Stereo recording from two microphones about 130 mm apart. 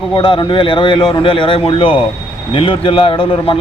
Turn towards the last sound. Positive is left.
turn(degrees=45)  # may be behind; listen again after turning